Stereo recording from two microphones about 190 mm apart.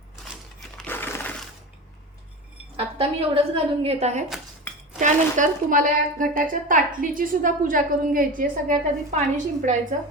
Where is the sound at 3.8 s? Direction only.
35° right (ahead or behind).